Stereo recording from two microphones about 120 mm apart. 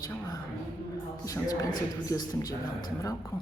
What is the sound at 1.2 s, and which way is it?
A man's voice, 25° left (ahead or behind).